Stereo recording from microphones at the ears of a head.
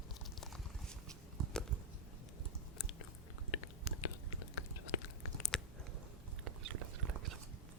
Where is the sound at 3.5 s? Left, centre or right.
Left.